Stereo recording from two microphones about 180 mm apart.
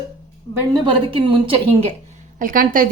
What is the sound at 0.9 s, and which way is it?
A woman's voice, 30° right (ahead or behind).